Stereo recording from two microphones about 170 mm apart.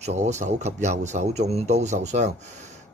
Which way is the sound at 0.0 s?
45° right (ahead or behind).